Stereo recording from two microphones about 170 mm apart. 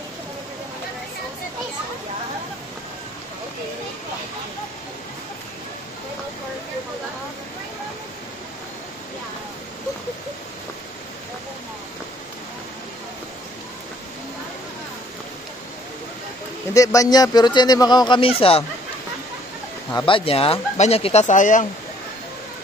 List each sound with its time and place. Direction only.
16.7 s a man's voice: 20° left (ahead or behind)
20.0 s speech: 30° left (ahead or behind); by 21.6 s 45° left (ahead or behind)